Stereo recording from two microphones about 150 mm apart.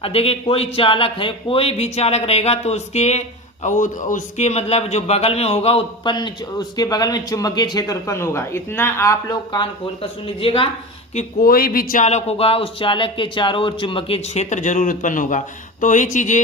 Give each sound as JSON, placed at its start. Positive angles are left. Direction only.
{"t": 0.0, "sound": "speech", "side_deg": 40}
{"t": 11.1, "sound": "speech", "side_deg": 50}
{"t": 11.4, "sound": "speech", "side_deg": 80}